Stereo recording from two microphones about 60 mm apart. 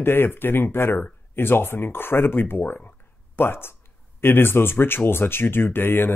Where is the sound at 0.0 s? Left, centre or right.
Left.